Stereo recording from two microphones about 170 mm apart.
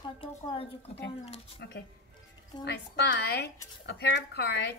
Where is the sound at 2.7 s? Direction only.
85° left.